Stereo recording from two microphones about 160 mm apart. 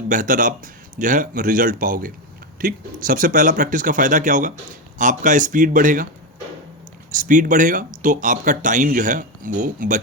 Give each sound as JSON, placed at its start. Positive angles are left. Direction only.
{"t": 0.1, "sound": "speech", "side_deg": -55}
{"t": 7.1, "sound": "speech", "side_deg": -55}